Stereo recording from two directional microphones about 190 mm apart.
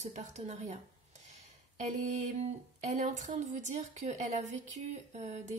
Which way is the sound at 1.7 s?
40° right (ahead or behind).